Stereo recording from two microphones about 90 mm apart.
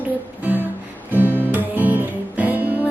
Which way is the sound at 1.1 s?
20° right (ahead or behind).